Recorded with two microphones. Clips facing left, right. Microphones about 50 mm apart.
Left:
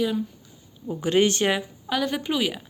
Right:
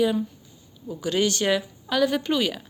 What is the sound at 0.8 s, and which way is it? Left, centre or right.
Speech, left.